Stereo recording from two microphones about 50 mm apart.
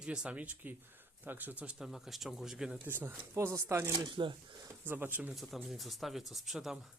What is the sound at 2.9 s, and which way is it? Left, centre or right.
Speech, right.